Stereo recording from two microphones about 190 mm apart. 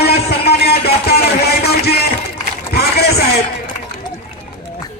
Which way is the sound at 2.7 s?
55° left (ahead or behind).